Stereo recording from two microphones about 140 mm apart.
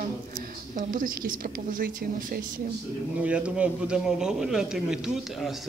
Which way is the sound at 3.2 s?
10° right (ahead or behind).